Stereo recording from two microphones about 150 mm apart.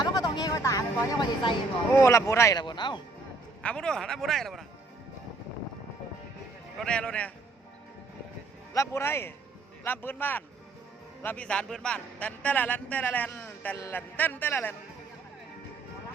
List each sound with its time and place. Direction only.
0.0 s speech: 25° left (ahead or behind)
1.9 s speech: 20° left (ahead or behind)
3.6 s speech: 5° left (ahead or behind)
6.7 s a man's voice: 5° left (ahead or behind)
8.7 s a man's voice: 20° left (ahead or behind)